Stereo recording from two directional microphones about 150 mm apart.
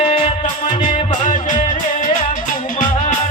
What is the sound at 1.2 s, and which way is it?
Music, 60° left (ahead or behind).